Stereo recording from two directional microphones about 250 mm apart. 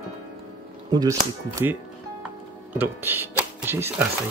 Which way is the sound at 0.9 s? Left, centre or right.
Centre.